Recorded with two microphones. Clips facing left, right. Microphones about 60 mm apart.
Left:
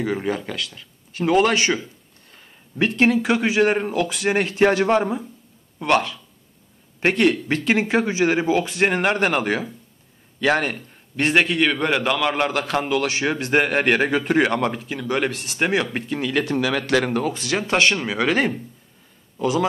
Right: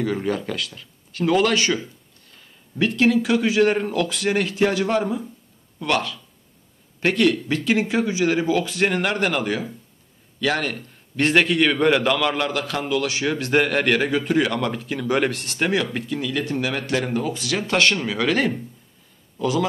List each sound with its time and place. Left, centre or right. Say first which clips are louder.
0.0 s speech: even; centre
0.6 s speech: even; centre
1.1 s speech: left 1 dB; left
11.1 s speech: right 1 dB; centre
12.4 s speech: left 3 dB; left
14.7 s speech: right 2 dB; centre; by 16.0 s left
16.1 s speech: left 3 dB; left
16.4 s speech: left 3 dB; left
17.2 s a man's voice: left 1 dB; left